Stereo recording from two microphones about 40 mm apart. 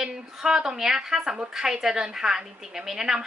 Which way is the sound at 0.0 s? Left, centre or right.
Centre.